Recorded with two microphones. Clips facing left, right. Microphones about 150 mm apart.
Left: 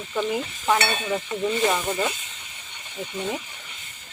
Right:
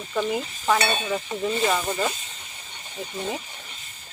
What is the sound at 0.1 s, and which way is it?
Speech, centre (ahead or behind).